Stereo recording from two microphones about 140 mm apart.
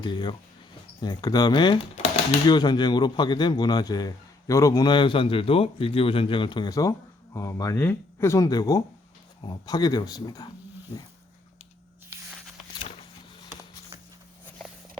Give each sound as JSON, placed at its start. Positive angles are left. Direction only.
{"t": 0.0, "sound": "a man's voice", "side_deg": 35}